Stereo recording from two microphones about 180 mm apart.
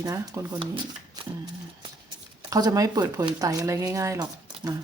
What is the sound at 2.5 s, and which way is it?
Speech, 20° right (ahead or behind).